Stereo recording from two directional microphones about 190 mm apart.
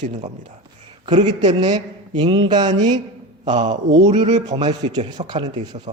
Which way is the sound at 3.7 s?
70° right (ahead or behind).